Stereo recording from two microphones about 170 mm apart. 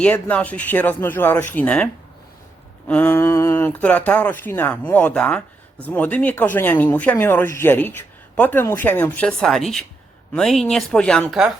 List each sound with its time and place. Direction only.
0.0 s speech: 10° left (ahead or behind)